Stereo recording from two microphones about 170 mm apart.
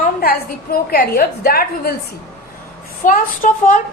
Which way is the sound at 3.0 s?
50° left (ahead or behind).